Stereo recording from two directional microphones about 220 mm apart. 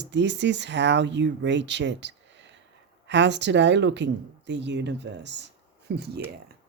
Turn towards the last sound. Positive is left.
turn(degrees=-45)  # may be behind; listen again after turning